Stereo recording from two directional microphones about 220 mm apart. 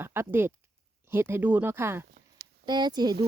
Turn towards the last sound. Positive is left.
turn(degrees=-20)  # may be behind; listen again after turning